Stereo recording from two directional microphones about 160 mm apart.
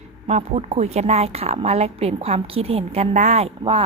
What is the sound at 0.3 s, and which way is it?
A woman's voice, 40° right (ahead or behind).